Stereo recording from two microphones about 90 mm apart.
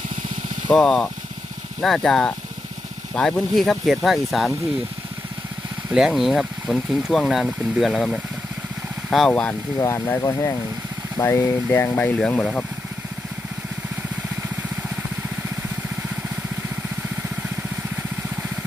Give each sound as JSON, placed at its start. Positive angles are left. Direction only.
{"t": 0.7, "sound": "speech", "side_deg": 5}
{"t": 5.9, "sound": "speech", "side_deg": -5}
{"t": 9.3, "sound": "speech", "side_deg": 15}
{"t": 9.7, "sound": "speech", "side_deg": 30}
{"t": 12.2, "sound": "speech", "side_deg": 5}